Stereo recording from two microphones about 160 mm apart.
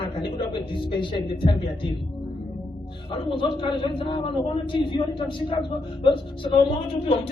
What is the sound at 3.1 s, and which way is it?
A man's voice, 30° left (ahead or behind).